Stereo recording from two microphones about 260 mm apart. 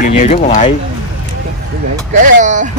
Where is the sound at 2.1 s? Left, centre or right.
Right.